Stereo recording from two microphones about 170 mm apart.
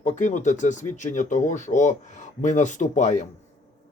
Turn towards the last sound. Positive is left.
turn(degrees=45)  # may be behind; listen again after turning